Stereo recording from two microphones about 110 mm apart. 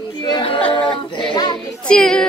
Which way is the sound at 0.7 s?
50° left (ahead or behind).